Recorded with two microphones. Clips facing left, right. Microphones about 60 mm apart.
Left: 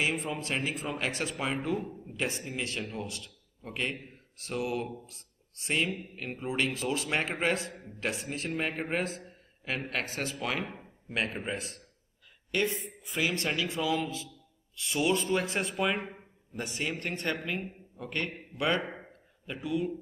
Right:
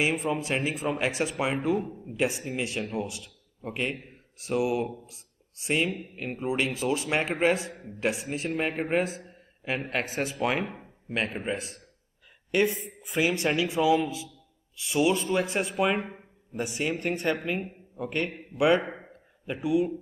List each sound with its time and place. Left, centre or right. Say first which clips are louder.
0.0 s a man's voice: right 5 dB; centre
12.4 s speech: right 5 dB; centre